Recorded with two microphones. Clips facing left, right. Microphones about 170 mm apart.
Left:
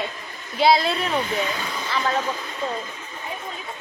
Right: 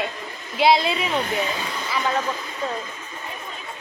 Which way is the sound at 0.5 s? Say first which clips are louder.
Even; centre (ahead or behind).